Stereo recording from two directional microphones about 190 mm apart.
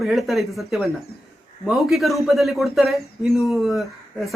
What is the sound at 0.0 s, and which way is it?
Speech, centre (ahead or behind).